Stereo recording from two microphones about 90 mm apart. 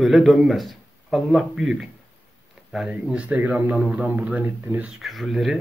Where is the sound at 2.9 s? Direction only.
15° right (ahead or behind).